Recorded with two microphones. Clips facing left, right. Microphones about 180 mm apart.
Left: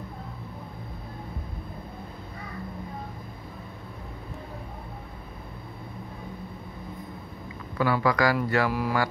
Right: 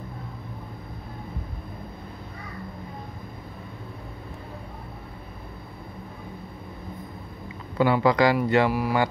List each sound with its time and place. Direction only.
7.7 s speech: 25° right (ahead or behind)